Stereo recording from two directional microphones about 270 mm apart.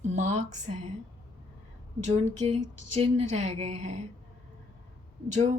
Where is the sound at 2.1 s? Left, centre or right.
Right.